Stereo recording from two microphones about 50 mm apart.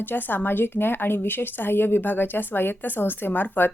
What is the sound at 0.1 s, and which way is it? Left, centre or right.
A woman's voice, left.